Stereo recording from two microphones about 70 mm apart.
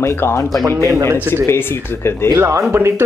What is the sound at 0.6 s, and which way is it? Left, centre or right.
Speech, right.